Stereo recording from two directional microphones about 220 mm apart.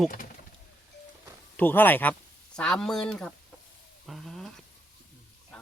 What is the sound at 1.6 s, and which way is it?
Speech, 10° left (ahead or behind).